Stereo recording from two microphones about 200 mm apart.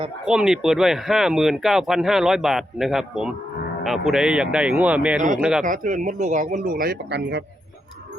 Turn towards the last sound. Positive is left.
turn(degrees=-55)  # may be behind; listen again after turning